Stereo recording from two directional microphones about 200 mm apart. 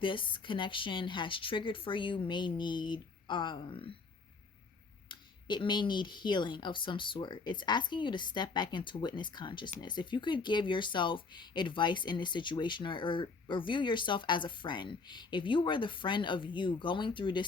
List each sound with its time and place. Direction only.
0.0 s speech: 25° left (ahead or behind)
5.0 s speech: 20° left (ahead or behind)